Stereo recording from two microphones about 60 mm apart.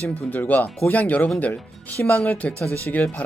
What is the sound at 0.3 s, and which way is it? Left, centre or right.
Speech, left.